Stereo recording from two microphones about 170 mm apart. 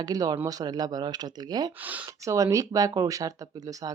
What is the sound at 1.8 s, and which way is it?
Speech, 10° right (ahead or behind).